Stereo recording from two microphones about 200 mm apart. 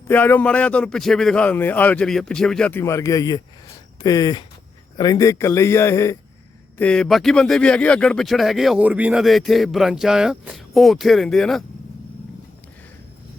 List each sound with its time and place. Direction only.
0.1 s a man's voice: 10° left (ahead or behind)